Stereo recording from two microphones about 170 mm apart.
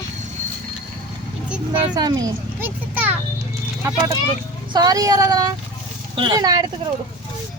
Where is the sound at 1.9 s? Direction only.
25° right (ahead or behind).